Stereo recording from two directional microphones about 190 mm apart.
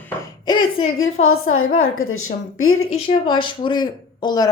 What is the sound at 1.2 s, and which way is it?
A woman's voice, 90° left.